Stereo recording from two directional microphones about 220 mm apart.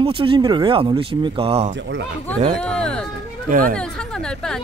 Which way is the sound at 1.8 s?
55° right (ahead or behind).